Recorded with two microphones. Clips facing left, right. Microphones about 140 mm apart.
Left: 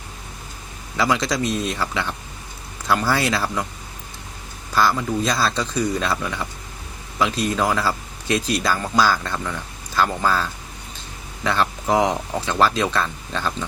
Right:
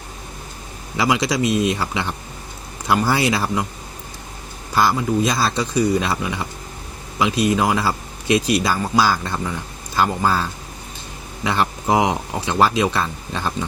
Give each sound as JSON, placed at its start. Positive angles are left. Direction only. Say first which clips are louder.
{"t": 0.9, "sound": "speech", "louder": "right 2 dB", "side_deg": -15}
{"t": 4.7, "sound": "speech", "louder": "right 2 dB", "side_deg": -15}
{"t": 11.4, "sound": "speech", "louder": "right 1 dB", "side_deg": -15}